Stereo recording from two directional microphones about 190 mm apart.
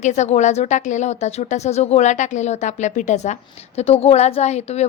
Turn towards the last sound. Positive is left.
turn(degrees=35)  # may be behind; listen again after turning